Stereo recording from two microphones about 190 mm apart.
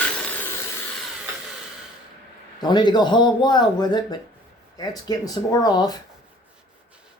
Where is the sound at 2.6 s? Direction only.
20° left (ahead or behind).